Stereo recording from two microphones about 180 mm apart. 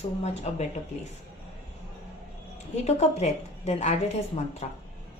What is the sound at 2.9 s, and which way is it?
A woman's voice, 40° left (ahead or behind).